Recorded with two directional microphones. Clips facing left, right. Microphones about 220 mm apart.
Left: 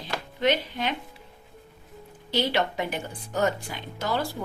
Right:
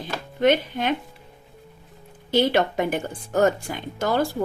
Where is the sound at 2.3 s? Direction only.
50° right (ahead or behind).